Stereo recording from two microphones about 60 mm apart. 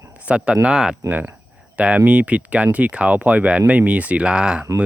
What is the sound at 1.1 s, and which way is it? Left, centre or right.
Speech, right.